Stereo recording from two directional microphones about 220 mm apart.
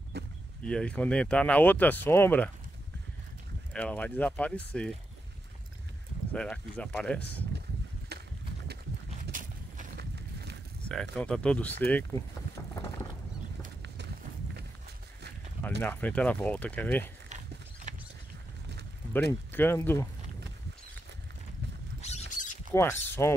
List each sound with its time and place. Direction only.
0.1 s a sound: 50° right (ahead or behind)
0.7 s speech: 5° left (ahead or behind)
3.7 s speech: 5° left (ahead or behind)
6.3 s speech: 5° left (ahead or behind)
8.1 s a sound: 50° right (ahead or behind)
9.2 s a sound: 35° right (ahead or behind)
10.9 s speech: 5° left (ahead or behind)
15.8 s speech: 10° left (ahead or behind)
19.5 s speech: 10° left (ahead or behind)
22.0 s squawk: 30° left (ahead or behind)
22.8 s speech: 10° left (ahead or behind)